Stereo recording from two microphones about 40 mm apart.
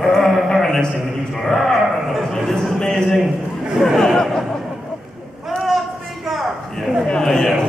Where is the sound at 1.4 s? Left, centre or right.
Centre.